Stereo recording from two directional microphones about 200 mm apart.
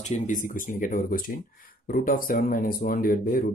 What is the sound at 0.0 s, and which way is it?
Speech, 35° left (ahead or behind).